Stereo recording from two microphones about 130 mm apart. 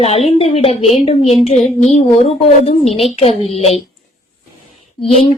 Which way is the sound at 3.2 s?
50° left (ahead or behind).